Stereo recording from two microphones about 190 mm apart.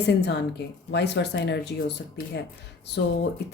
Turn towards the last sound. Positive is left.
turn(degrees=65)  # may be behind; listen again after turning